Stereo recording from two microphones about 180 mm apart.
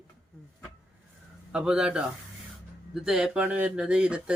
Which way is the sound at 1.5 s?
5° right (ahead or behind).